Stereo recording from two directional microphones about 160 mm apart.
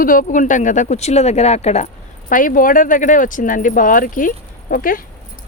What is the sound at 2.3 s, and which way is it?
Speech, 55° left (ahead or behind).